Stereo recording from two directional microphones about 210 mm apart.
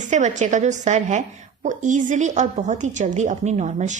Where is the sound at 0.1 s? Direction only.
35° right (ahead or behind).